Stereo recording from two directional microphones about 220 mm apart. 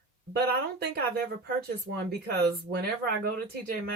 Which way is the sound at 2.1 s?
45° right (ahead or behind).